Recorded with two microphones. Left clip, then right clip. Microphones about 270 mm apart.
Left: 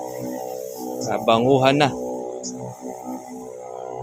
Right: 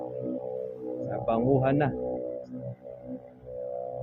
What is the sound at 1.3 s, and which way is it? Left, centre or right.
Speech, left.